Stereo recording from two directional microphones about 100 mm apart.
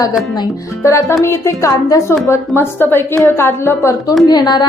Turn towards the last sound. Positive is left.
turn(degrees=45)  # may be behind; listen again after turning